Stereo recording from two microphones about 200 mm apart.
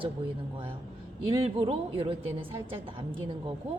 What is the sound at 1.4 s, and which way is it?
A woman's voice, 30° right (ahead or behind).